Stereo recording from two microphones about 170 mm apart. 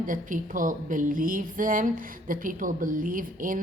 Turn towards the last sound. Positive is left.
turn(degrees=-55)  # may be behind; listen again after turning